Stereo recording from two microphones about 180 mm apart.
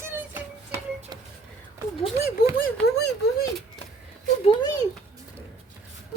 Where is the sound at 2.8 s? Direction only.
65° left (ahead or behind).